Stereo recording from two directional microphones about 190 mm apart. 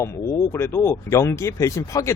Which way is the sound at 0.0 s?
15° left (ahead or behind).